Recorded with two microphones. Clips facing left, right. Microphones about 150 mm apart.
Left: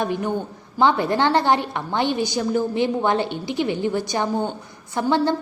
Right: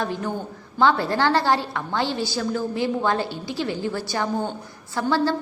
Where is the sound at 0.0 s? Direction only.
15° left (ahead or behind).